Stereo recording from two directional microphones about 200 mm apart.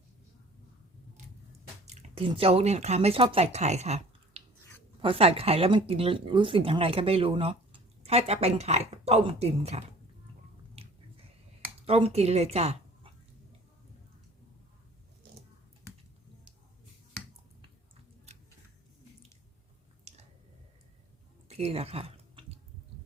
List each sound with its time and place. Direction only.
1.9 s speech: 30° right (ahead or behind)
10.8 s finger snapping: 30° right (ahead or behind)
11.9 s speech: 30° right (ahead or behind)
18.3 s a sound: 30° right (ahead or behind)
20.1 s a sound: 35° right (ahead or behind)
21.4 s chewing: 30° right (ahead or behind)